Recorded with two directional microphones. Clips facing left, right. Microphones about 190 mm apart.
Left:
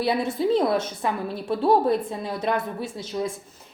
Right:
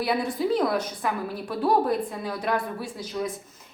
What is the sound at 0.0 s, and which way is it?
A woman's voice, 25° left (ahead or behind).